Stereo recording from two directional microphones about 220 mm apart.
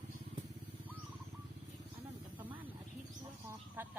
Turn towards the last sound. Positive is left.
turn(degrees=-10)  # may be behind; listen again after turning